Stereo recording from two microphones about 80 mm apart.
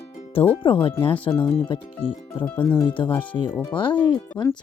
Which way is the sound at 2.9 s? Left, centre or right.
Left.